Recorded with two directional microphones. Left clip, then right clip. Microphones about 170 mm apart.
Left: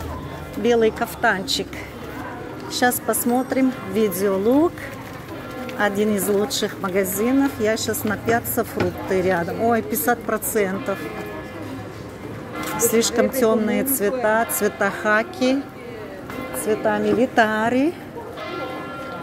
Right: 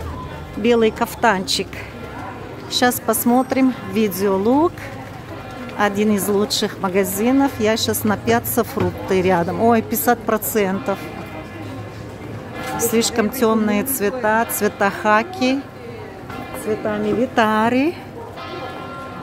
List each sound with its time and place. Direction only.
0.6 s a woman's voice: 25° right (ahead or behind)
2.7 s a woman's voice: 20° right (ahead or behind)
5.8 s a woman's voice: 15° right (ahead or behind)
12.7 s speech: 10° right (ahead or behind)
16.6 s speech: 5° left (ahead or behind)
17.4 s speech: 15° right (ahead or behind)